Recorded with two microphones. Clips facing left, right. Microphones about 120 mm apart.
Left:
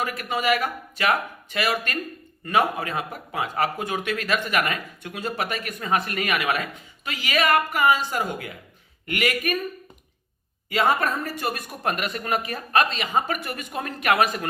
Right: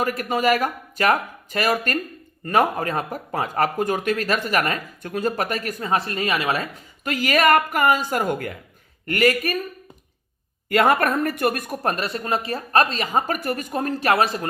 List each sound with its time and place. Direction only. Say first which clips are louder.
0.0 s speech: right 4 dB; 40° right (ahead or behind)
7.0 s speech: right 5 dB; 45° right (ahead or behind)
10.7 s speech: right 4 dB; 55° right (ahead or behind); by 14.4 s 30° right (ahead or behind)